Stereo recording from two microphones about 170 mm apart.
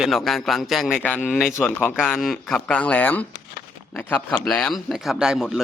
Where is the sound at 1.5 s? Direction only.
15° left (ahead or behind).